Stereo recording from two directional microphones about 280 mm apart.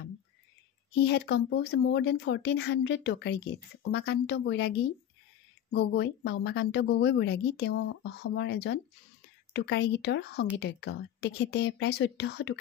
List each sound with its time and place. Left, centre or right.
0.9 s speech: left